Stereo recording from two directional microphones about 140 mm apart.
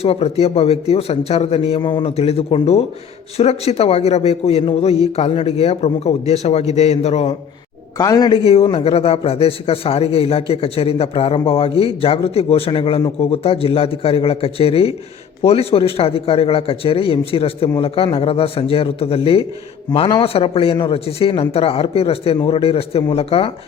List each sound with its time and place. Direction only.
0.0 s a man's voice: 45° left (ahead or behind)
7.9 s speech: 25° left (ahead or behind)
8.4 s a man's voice: 40° left (ahead or behind)